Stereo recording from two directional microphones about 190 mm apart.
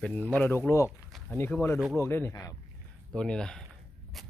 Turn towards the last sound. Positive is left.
turn(degrees=0)  # may be behind; listen again after turning